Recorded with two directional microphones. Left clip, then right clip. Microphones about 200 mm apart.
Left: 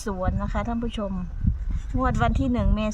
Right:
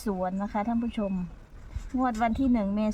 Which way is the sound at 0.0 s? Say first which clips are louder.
Left 1 dB; 15° left (ahead or behind).